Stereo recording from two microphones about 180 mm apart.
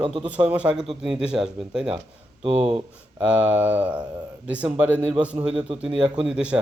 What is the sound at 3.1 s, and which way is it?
Speech, 5° right (ahead or behind).